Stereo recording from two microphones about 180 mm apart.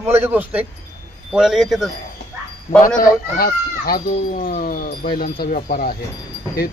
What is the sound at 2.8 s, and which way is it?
Speech, 50° left (ahead or behind).